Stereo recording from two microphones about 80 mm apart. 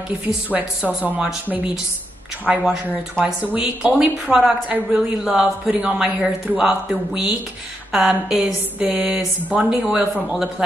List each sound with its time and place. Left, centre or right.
0.2 s a woman's voice: right